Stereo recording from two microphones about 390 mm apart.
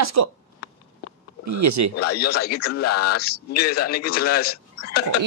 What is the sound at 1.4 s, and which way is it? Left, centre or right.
Speech, right.